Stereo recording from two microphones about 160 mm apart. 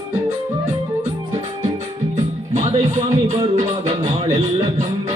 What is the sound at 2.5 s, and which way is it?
Music, 45° right (ahead or behind).